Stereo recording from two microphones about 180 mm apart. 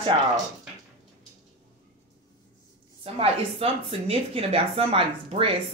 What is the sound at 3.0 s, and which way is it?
Speech, 35° right (ahead or behind).